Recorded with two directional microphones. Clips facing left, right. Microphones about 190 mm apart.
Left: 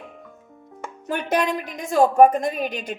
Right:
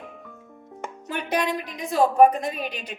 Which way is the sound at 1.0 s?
50° left (ahead or behind).